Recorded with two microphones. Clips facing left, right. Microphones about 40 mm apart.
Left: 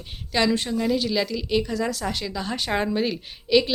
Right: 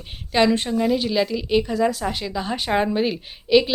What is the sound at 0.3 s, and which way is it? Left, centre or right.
A woman's voice, right.